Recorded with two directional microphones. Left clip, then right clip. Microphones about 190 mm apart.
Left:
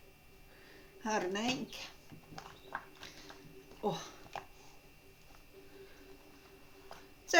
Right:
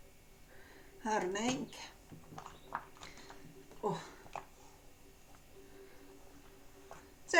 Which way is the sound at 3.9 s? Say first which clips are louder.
Even; 25° left (ahead or behind).